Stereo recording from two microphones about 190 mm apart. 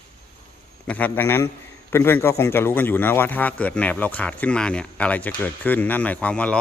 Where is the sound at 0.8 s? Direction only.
10° left (ahead or behind).